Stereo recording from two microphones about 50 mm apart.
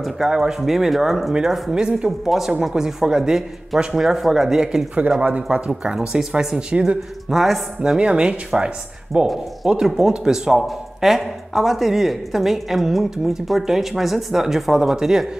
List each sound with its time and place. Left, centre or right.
0.3 s a woman's voice: centre
7.2 s speech: centre
7.8 s a woman's voice: centre